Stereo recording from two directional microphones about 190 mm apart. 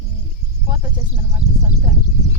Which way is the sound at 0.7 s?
25° right (ahead or behind).